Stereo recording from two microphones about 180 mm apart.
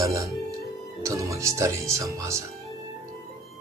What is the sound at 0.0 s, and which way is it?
Speech, 15° right (ahead or behind).